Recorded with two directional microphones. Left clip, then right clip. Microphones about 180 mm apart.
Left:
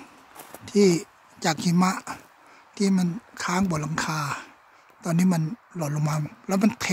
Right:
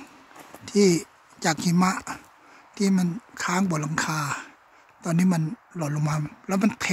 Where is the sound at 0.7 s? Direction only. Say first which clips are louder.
Even; 5° left (ahead or behind).